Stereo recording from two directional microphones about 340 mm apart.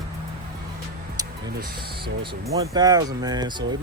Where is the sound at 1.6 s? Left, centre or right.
Right.